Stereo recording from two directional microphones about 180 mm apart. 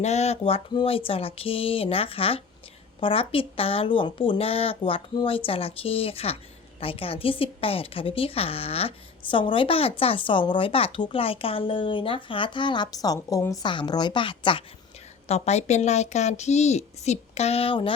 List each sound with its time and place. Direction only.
0.0 s speech: 35° left (ahead or behind)